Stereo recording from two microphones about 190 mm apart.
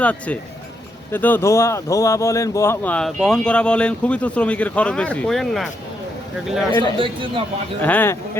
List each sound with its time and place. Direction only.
0.0 s speech: 5° left (ahead or behind)
6.9 s speech: 25° right (ahead or behind)
7.8 s speech: 10° left (ahead or behind)